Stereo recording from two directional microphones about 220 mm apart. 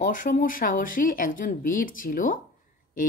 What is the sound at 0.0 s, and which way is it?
Speech, 35° left (ahead or behind).